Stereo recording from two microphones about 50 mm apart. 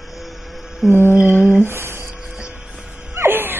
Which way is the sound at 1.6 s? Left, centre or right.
Right.